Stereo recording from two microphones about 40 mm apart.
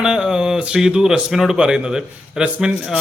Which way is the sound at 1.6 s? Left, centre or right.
Centre.